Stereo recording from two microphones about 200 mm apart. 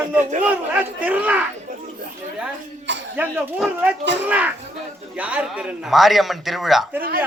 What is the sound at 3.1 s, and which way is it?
Speech, 5° right (ahead or behind).